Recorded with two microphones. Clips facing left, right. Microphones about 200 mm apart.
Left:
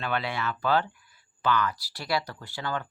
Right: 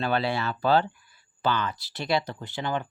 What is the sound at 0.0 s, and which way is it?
Speech, 30° right (ahead or behind).